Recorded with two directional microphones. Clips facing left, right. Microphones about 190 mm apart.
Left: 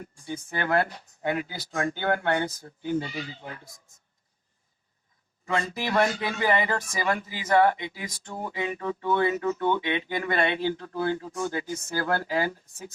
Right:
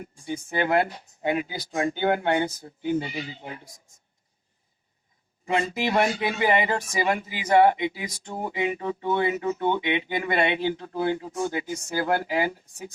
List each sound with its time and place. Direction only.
0.0 s speech: 15° right (ahead or behind)
5.5 s speech: 20° right (ahead or behind)